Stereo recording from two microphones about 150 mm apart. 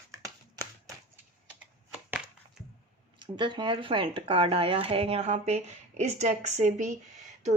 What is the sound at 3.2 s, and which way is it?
A woman's voice, 30° right (ahead or behind).